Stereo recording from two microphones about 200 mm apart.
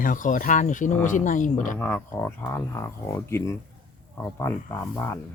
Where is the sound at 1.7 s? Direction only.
10° left (ahead or behind).